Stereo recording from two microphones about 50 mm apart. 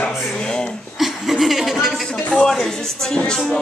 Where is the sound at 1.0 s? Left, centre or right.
Centre.